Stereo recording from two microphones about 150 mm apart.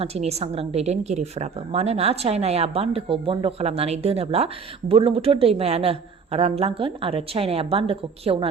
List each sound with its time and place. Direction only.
0.0 s a woman's voice: 45° right (ahead or behind)